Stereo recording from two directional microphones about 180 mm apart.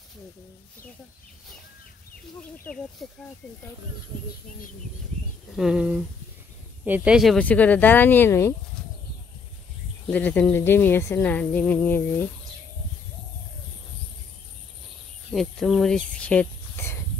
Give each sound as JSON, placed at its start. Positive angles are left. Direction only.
{"t": 2.6, "sound": "speech", "side_deg": 5}
{"t": 5.6, "sound": "speech", "side_deg": -5}
{"t": 10.0, "sound": "speech", "side_deg": 10}
{"t": 15.3, "sound": "speech", "side_deg": 0}